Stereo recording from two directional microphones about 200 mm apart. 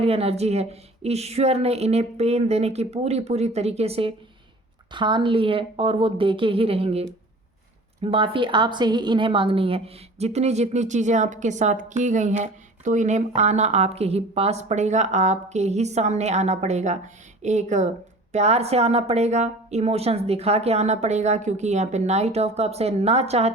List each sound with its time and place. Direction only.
0.0 s a woman's voice: 30° right (ahead or behind)
8.0 s a woman's voice: 25° right (ahead or behind)